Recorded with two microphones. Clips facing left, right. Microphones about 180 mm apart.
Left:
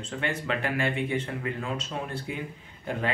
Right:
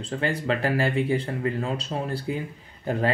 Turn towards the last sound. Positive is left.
turn(degrees=-35)  # may be behind; listen again after turning